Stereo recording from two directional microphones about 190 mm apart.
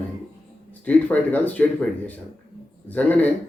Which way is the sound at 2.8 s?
10° left (ahead or behind).